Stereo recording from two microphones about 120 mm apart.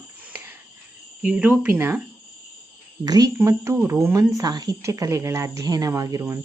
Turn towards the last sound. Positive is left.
turn(degrees=-25)  # may be behind; listen again after turning